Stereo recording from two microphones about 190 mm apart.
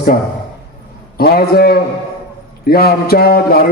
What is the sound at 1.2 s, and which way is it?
Speech, 55° left (ahead or behind).